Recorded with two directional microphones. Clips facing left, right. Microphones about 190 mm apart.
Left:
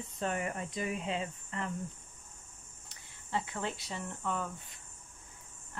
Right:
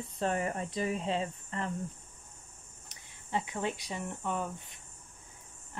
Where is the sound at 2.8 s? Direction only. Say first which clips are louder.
Right 1 dB; 20° right (ahead or behind).